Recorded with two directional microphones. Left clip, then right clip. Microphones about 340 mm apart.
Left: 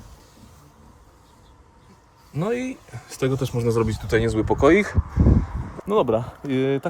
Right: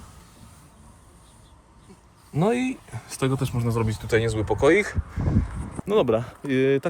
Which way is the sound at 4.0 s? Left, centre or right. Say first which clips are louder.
Left 2 dB; centre.